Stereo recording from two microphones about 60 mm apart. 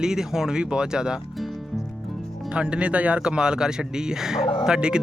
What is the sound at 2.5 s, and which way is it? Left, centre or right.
Speech, centre.